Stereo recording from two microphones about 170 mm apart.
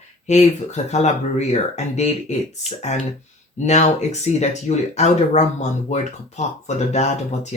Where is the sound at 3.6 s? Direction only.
40° left (ahead or behind).